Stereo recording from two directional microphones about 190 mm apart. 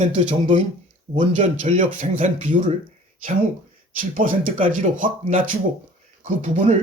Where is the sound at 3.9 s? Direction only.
45° right (ahead or behind).